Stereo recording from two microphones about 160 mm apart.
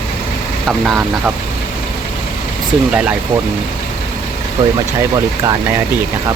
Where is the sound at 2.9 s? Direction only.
5° right (ahead or behind).